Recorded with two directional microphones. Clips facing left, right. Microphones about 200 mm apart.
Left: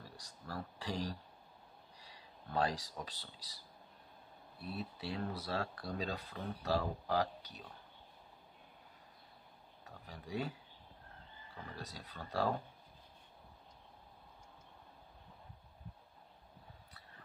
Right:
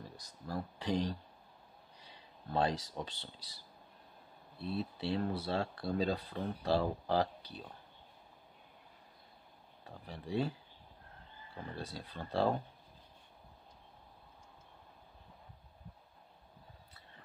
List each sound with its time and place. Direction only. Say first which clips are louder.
0.5 s speech: right 6 dB; 20° right (ahead or behind)
4.6 s speech: right 6 dB; 25° right (ahead or behind)
9.8 s speech: right 6 dB; 30° right (ahead or behind)
11.7 s speech: right 6 dB; 30° right (ahead or behind)